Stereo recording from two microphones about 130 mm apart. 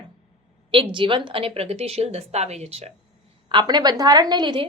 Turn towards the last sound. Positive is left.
turn(degrees=-35)  # may be behind; listen again after turning